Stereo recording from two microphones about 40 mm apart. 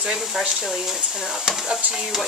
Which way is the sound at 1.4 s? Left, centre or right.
Centre.